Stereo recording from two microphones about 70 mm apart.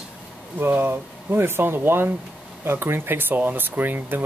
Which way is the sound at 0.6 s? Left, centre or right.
Right.